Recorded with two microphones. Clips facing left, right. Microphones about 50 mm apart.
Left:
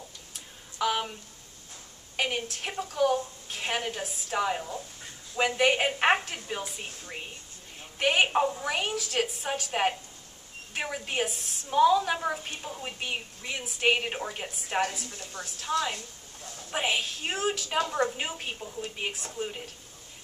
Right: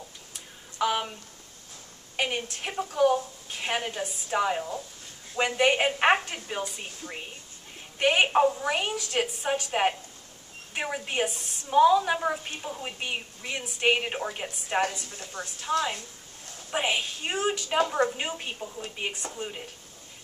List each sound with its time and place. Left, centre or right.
0.3 s a sound: centre
2.1 s a woman's voice: centre
15.3 s a woman's voice: right
16.7 s a woman's voice: centre
18.2 s a woman's voice: centre